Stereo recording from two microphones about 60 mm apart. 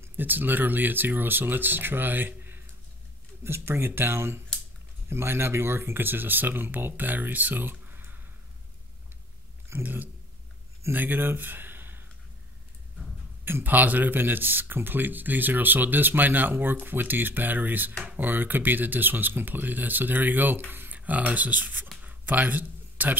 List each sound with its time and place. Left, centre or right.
0.0 s speech: right
7.8 s a sound: right
9.7 s speech: right
10.9 s speech: right
13.5 s speech: right
22.0 s a sound: right